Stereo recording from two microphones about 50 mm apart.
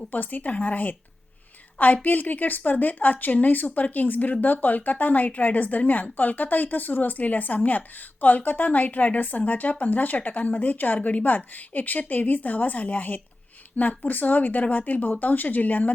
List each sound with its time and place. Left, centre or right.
0.1 s speech: left